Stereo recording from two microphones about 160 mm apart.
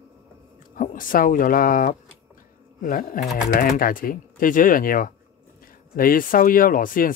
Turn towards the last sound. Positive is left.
turn(degrees=60)  # may be behind; listen again after turning